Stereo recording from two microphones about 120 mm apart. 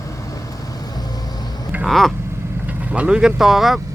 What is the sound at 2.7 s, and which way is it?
Speech, 10° right (ahead or behind).